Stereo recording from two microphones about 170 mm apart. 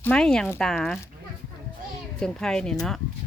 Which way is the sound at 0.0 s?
10° left (ahead or behind).